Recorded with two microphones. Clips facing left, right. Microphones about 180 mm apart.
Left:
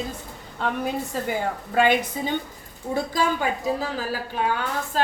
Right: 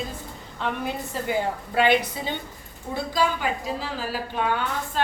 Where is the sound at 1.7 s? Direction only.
45° left (ahead or behind).